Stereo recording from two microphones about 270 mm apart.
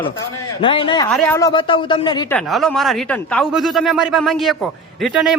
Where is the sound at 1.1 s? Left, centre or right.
Centre.